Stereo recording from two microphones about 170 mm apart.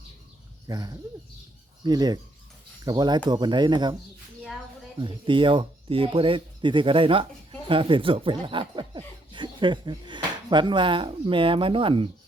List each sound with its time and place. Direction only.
0.7 s speech: 20° right (ahead or behind)
4.9 s speech: 30° right (ahead or behind)